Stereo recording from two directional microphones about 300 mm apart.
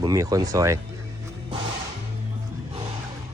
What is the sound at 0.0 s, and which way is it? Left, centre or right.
Speech, centre.